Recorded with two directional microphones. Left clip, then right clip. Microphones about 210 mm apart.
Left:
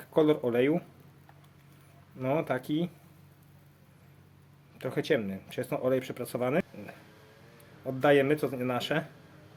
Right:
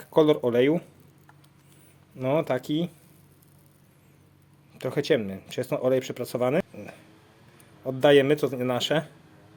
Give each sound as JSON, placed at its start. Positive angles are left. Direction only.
{"t": 0.0, "sound": "speech", "side_deg": -30}
{"t": 2.1, "sound": "speech", "side_deg": -25}
{"t": 4.8, "sound": "speech", "side_deg": -30}
{"t": 8.0, "sound": "a man's voice", "side_deg": -35}